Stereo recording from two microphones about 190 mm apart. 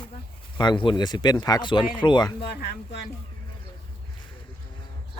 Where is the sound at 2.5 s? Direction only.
60° left (ahead or behind).